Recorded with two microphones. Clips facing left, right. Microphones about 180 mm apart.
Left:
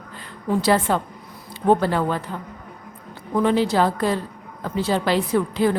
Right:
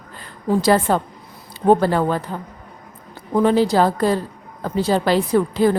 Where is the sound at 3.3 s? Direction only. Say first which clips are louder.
Right 3 dB; 40° right (ahead or behind).